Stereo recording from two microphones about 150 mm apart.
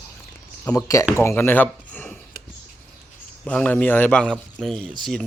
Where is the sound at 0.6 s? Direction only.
10° left (ahead or behind).